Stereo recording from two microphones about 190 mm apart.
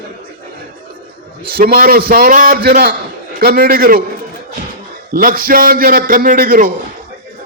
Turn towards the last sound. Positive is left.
turn(degrees=-45)  # may be behind; listen again after turning